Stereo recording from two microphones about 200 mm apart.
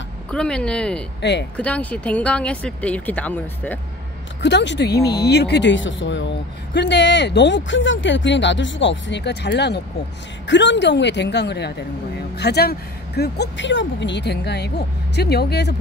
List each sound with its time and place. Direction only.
0.3 s speech: 5° left (ahead or behind)
4.4 s speech: 60° left (ahead or behind)